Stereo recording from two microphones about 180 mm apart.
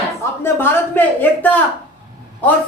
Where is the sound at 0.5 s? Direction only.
10° left (ahead or behind).